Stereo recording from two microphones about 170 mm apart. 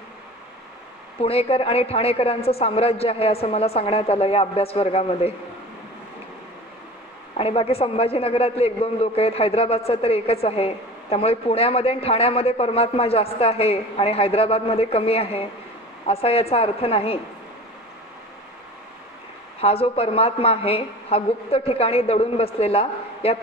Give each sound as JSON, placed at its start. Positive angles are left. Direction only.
{"t": 1.2, "sound": "a man's voice", "side_deg": 35}
{"t": 7.3, "sound": "a man's voice", "side_deg": 35}
{"t": 19.6, "sound": "a man's voice", "side_deg": 35}